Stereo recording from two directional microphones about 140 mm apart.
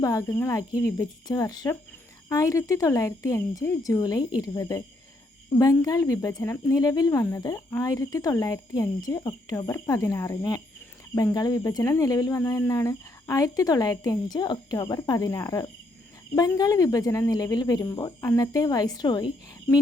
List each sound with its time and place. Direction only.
0.0 s speech: 20° left (ahead or behind)